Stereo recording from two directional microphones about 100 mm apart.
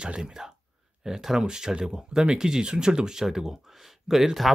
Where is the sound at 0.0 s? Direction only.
5° right (ahead or behind).